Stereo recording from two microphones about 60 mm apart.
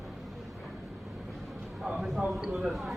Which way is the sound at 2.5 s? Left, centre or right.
Centre.